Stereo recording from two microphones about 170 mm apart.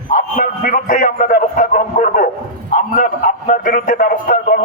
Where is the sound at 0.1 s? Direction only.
50° left (ahead or behind).